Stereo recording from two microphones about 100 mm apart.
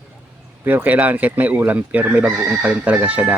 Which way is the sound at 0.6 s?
20° right (ahead or behind).